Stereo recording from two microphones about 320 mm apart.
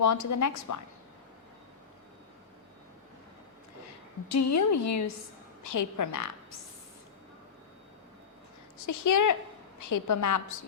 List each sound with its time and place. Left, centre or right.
0.0 s a woman's voice: left
4.3 s a woman's voice: left
8.9 s a woman's voice: left